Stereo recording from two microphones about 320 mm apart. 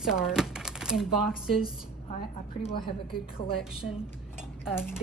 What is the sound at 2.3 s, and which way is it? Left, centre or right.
Speech, centre.